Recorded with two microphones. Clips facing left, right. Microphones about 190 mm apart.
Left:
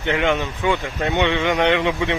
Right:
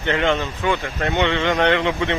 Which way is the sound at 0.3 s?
20° left (ahead or behind).